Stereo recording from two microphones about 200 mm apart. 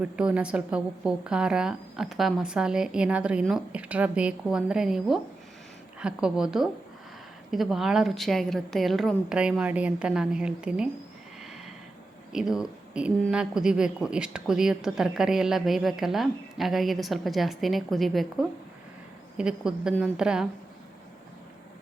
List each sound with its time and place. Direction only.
0.0 s a woman's voice: 5° right (ahead or behind)
12.3 s a woman's voice: centre (ahead or behind)